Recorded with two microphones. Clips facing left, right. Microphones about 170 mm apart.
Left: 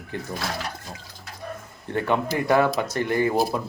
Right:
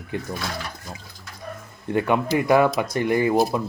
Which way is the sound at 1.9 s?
15° right (ahead or behind).